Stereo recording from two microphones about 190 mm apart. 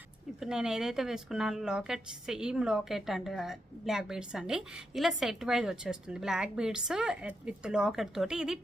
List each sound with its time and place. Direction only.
0.3 s speech: 5° right (ahead or behind)